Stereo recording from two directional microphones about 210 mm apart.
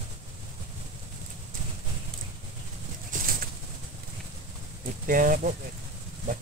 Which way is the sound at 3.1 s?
45° right (ahead or behind).